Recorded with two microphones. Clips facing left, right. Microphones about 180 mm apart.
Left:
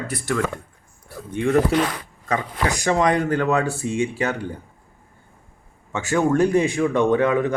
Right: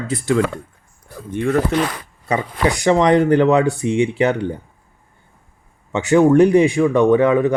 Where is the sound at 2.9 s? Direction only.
20° right (ahead or behind).